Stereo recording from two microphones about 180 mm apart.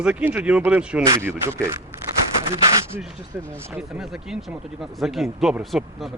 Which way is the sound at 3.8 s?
5° right (ahead or behind).